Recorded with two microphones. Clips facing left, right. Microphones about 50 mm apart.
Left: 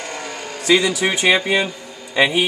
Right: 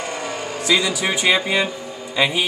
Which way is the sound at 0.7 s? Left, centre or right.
Left.